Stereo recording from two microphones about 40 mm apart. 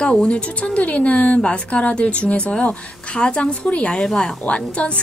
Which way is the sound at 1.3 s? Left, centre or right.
Left.